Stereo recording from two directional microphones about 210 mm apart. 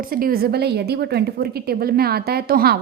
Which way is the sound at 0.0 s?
45° right (ahead or behind).